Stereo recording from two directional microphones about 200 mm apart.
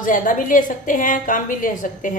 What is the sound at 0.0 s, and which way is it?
A woman's voice, 40° left (ahead or behind).